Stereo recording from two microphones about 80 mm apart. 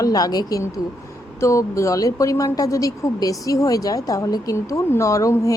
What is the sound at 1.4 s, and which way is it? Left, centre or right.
A woman's voice, left.